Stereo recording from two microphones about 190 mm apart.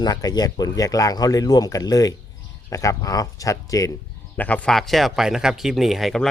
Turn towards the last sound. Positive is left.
turn(degrees=0)  # may be behind; listen again after turning